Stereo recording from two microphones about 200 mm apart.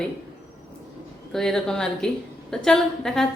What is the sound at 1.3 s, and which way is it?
A woman's voice, centre (ahead or behind).